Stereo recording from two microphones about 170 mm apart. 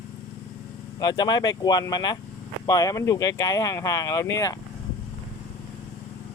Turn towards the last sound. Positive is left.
turn(degrees=20)  # may be behind; listen again after turning